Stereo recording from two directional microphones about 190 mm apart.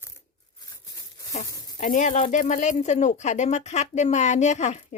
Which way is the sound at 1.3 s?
40° left (ahead or behind).